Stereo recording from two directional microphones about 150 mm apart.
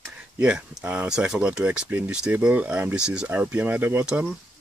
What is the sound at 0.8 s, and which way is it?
Speech, 5° right (ahead or behind).